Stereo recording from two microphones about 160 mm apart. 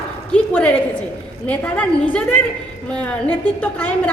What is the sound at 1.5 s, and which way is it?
A woman's voice, 10° left (ahead or behind).